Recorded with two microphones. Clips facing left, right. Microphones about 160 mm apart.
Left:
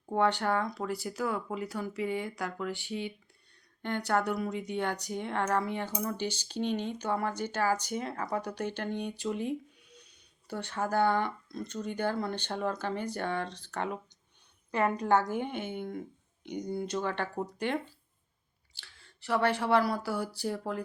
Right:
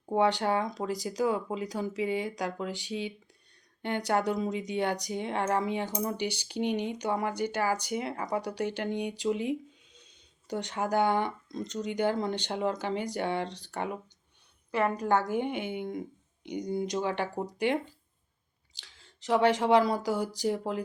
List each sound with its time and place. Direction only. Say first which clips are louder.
0.0 s speech: right 2 dB; 15° right (ahead or behind)
3.8 s speech: right 2 dB; 15° right (ahead or behind)
9.2 s a sound: right 4 dB; 15° right (ahead or behind)
10.5 s speech: right 2 dB; 15° right (ahead or behind)